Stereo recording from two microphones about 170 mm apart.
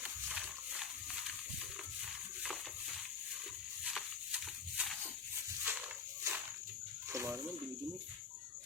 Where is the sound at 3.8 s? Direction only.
5° right (ahead or behind).